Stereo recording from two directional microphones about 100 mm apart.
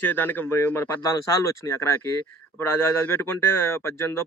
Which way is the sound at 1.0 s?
30° left (ahead or behind).